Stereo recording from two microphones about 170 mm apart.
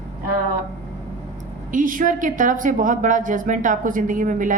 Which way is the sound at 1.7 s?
50° right (ahead or behind).